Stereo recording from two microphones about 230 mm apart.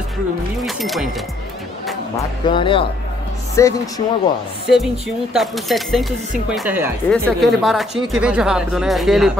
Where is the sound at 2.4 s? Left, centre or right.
Left.